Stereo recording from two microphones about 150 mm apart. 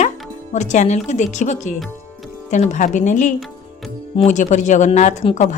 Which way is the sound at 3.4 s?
Centre (ahead or behind).